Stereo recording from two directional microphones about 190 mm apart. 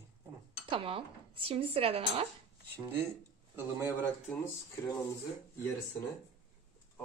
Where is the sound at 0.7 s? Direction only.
30° right (ahead or behind).